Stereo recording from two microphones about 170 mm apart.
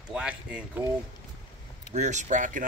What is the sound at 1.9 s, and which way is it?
Speech, 45° right (ahead or behind).